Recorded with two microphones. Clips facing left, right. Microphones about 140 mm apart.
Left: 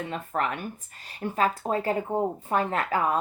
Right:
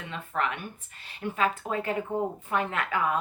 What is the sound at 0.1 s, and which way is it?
Speech, 40° left (ahead or behind).